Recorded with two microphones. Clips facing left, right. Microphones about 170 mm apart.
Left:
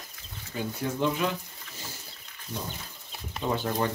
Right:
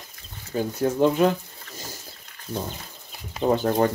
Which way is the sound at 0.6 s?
45° right (ahead or behind).